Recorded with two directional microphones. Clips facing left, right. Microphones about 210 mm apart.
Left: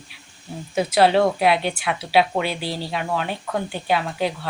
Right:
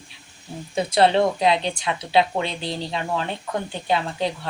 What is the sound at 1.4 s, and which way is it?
Speech, 20° right (ahead or behind).